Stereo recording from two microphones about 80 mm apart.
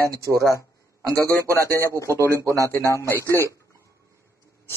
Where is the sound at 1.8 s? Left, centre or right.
Left.